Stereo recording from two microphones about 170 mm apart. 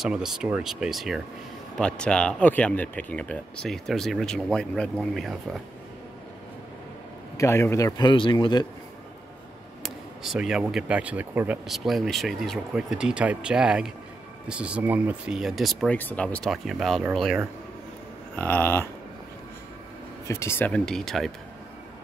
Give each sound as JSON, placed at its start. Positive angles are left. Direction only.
{"t": 0.0, "sound": "speech", "side_deg": -5}
{"t": 7.3, "sound": "a man's voice", "side_deg": 15}
{"t": 9.8, "sound": "speech", "side_deg": 0}
{"t": 18.3, "sound": "speech", "side_deg": 10}
{"t": 20.2, "sound": "speech", "side_deg": 15}